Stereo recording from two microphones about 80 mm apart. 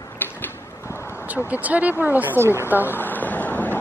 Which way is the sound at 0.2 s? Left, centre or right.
Left.